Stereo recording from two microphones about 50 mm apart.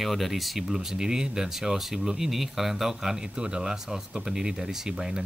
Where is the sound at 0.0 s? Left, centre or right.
Centre.